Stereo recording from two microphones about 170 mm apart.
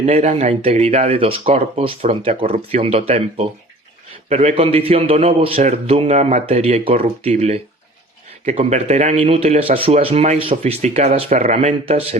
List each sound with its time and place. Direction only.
0.0 s speech: 40° right (ahead or behind)